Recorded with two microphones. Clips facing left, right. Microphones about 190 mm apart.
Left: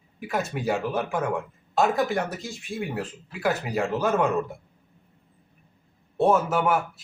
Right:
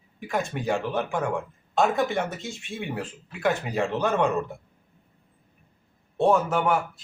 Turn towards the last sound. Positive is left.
turn(degrees=5)  # may be behind; listen again after turning